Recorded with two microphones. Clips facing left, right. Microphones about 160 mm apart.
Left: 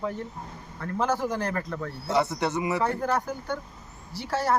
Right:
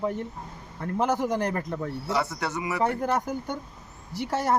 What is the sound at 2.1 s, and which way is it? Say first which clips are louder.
Speech: left 4 dB; 20° left (ahead or behind).